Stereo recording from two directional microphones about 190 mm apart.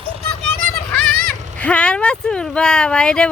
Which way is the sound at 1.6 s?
5° left (ahead or behind).